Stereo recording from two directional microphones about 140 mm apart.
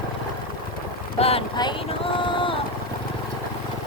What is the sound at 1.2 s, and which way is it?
Boat, 45° left (ahead or behind).